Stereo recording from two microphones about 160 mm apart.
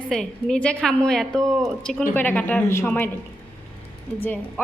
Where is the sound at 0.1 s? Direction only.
Centre (ahead or behind).